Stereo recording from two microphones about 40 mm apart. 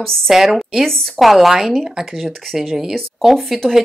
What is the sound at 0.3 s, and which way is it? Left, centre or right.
Speech, centre.